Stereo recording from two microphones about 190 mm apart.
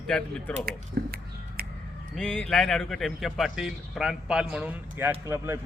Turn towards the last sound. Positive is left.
turn(degrees=-15)  # may be behind; listen again after turning